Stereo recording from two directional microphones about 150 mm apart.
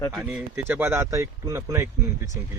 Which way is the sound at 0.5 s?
15° right (ahead or behind).